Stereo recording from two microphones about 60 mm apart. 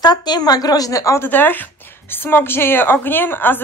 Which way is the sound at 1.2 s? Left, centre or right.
Left.